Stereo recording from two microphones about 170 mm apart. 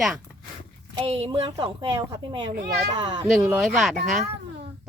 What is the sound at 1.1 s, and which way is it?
Speech, 35° right (ahead or behind).